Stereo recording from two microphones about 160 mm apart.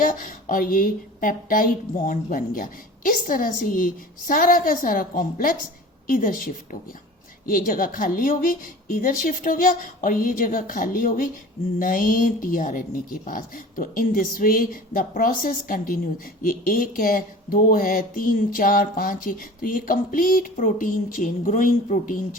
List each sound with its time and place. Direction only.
0.0 s a woman's voice: 55° left (ahead or behind)